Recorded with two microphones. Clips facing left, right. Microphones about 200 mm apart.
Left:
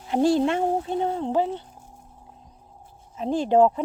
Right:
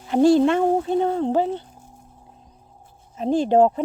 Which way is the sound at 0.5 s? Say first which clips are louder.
Right 5 dB; 45° right (ahead or behind).